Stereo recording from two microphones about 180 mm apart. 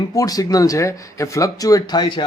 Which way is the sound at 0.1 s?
20° left (ahead or behind).